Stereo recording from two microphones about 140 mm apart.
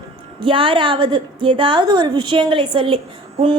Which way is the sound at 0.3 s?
40° right (ahead or behind).